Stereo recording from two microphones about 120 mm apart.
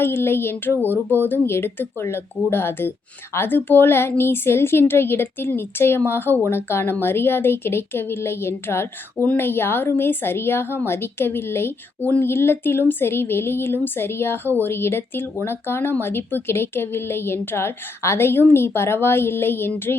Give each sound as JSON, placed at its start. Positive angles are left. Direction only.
{"t": 0.0, "sound": "a woman's voice", "side_deg": 20}